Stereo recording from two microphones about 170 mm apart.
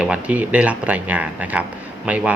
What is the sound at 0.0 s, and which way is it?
Speech, 10° right (ahead or behind).